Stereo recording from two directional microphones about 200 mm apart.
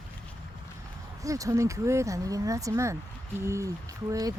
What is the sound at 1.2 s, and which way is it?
Speech, 15° right (ahead or behind).